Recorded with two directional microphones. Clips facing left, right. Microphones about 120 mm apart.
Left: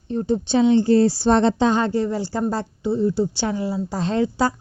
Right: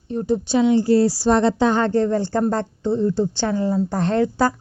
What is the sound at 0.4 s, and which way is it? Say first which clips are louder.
A woman's voice: left 1 dB; 25° left (ahead or behind).